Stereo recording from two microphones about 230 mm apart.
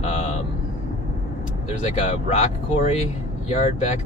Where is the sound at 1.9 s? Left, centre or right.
Left.